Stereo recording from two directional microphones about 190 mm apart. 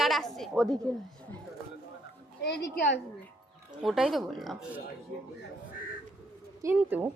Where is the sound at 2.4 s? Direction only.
60° left (ahead or behind).